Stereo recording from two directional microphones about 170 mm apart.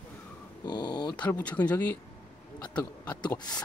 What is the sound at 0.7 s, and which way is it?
Speech, 25° left (ahead or behind).